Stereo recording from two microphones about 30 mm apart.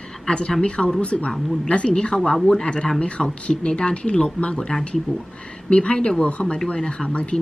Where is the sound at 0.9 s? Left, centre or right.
Left.